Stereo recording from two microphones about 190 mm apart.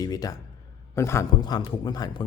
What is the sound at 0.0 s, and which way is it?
Speech, 20° left (ahead or behind).